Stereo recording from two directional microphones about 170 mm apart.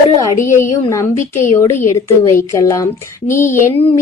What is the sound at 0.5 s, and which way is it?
A woman's voice, 15° left (ahead or behind).